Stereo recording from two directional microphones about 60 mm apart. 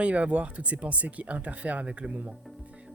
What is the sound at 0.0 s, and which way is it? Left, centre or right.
Speech, right.